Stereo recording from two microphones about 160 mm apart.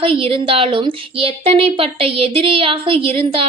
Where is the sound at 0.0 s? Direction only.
35° right (ahead or behind).